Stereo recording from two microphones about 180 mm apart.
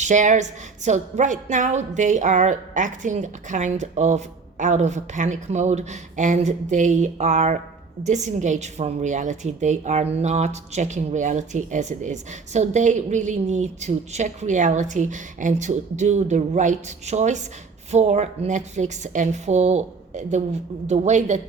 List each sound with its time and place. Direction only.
0.0 s a woman's voice: 45° right (ahead or behind)